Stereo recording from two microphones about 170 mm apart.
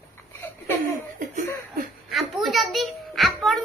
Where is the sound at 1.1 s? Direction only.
50° right (ahead or behind).